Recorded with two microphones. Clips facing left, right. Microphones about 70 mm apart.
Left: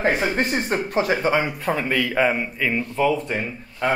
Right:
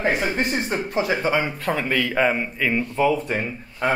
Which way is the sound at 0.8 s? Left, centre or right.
Left.